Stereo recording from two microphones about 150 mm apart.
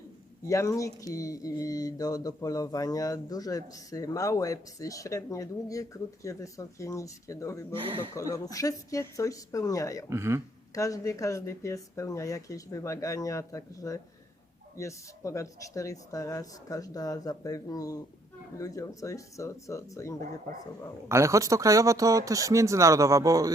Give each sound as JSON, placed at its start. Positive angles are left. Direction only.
{"t": 0.4, "sound": "speech", "side_deg": 20}
{"t": 7.8, "sound": "speech", "side_deg": -35}
{"t": 8.1, "sound": "speech", "side_deg": 20}
{"t": 10.1, "sound": "speech", "side_deg": -20}
{"t": 10.8, "sound": "speech", "side_deg": 20}
{"t": 21.1, "sound": "speech", "side_deg": -20}